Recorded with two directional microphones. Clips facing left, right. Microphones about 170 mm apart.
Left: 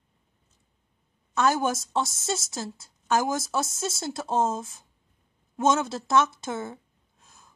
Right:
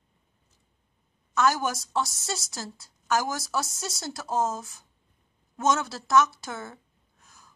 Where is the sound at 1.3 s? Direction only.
25° left (ahead or behind).